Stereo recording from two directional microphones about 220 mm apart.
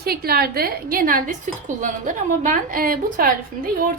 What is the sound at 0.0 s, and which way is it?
A woman's voice, 45° right (ahead or behind).